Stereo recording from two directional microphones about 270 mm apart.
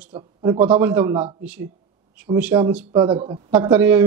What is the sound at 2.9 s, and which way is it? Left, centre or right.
A man's voice, centre.